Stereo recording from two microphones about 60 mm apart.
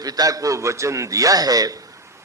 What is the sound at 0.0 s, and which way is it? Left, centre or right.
A man's voice, right.